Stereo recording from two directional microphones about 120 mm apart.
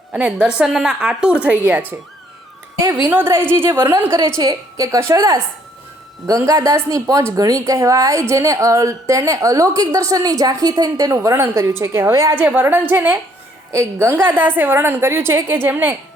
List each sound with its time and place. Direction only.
0.1 s a woman's voice: 5° right (ahead or behind)